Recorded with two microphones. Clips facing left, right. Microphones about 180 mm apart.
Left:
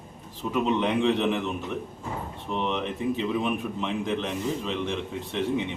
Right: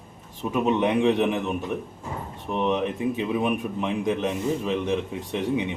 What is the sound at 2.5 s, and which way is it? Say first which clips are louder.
A man's voice: right 5 dB; 15° right (ahead or behind).